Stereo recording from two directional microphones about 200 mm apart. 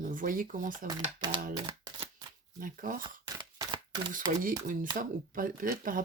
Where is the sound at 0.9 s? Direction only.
20° right (ahead or behind).